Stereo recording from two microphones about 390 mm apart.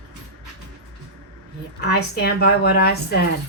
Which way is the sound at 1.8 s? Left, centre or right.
Left.